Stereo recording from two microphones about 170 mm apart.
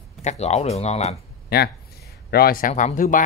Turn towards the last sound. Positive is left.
turn(degrees=45)  # may be behind; listen again after turning